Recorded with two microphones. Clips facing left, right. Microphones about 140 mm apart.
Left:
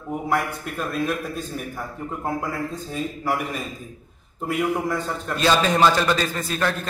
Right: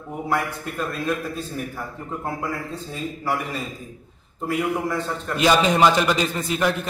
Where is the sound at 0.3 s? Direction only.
Centre (ahead or behind).